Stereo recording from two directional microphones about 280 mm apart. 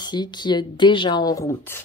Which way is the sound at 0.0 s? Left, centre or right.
Centre.